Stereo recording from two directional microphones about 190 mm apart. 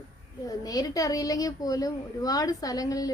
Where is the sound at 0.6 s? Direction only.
20° left (ahead or behind).